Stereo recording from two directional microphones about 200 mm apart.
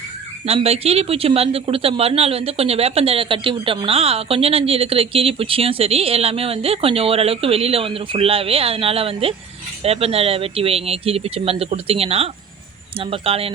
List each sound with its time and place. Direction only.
0.4 s speech: 30° right (ahead or behind)